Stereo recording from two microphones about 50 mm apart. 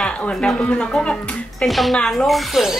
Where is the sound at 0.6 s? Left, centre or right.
Left.